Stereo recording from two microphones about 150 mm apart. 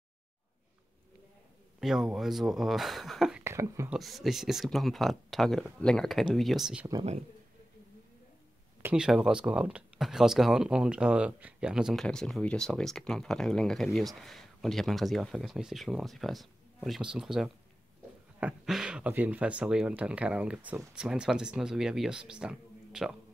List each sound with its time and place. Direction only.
1.8 s speech: 5° right (ahead or behind)
3.4 s speech: 20° right (ahead or behind)
3.9 s speech: centre (ahead or behind)
8.8 s speech: 5° right (ahead or behind)